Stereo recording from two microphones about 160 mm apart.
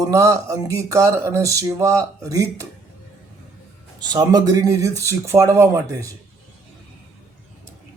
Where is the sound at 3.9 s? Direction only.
25° right (ahead or behind).